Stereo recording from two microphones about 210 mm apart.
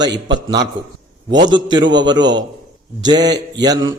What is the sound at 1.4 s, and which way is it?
A man's voice, 20° right (ahead or behind).